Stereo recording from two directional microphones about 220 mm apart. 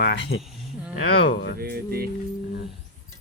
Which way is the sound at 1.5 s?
45° right (ahead or behind).